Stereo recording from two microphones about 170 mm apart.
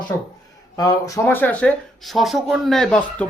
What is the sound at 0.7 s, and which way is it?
Speech, 25° left (ahead or behind).